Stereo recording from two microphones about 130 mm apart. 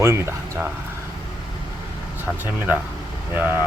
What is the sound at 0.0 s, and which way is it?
Speech, 20° right (ahead or behind).